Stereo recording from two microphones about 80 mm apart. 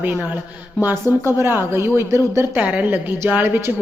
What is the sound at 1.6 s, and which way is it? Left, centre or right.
Speech, right.